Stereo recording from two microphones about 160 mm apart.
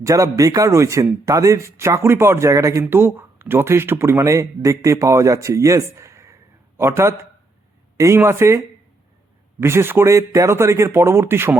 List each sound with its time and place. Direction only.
0.0 s speech: 20° right (ahead or behind)